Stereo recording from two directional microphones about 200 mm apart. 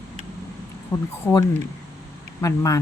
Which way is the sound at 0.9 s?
15° left (ahead or behind).